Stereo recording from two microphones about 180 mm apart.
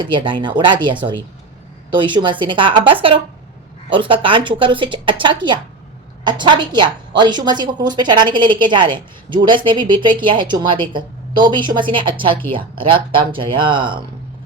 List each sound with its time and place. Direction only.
0.0 s a woman's voice: 25° right (ahead or behind)
2.0 s a woman's voice: 25° right (ahead or behind)